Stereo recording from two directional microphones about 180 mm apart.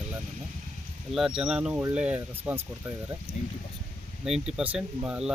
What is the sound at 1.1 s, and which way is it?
Speech, 5° right (ahead or behind).